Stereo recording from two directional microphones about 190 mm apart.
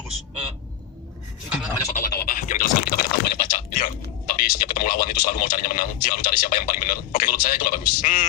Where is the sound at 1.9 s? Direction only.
50° left (ahead or behind).